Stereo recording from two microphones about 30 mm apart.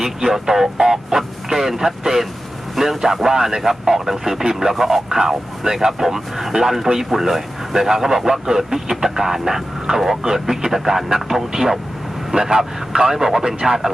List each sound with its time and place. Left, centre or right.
0.0 s speech: centre